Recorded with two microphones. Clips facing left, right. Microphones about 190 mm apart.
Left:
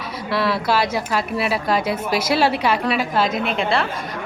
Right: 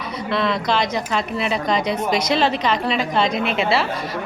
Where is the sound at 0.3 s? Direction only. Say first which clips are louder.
Left 1 dB; 5° left (ahead or behind).